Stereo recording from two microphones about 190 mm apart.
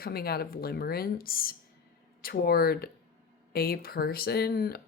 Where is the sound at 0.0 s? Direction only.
55° left (ahead or behind).